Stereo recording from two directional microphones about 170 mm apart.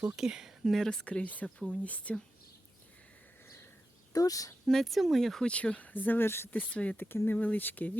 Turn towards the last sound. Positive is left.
turn(degrees=10)  # may be behind; listen again after turning